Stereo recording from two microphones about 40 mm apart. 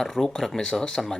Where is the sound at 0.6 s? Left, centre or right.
Centre.